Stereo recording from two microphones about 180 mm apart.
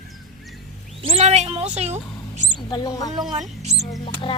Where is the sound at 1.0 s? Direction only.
35° right (ahead or behind).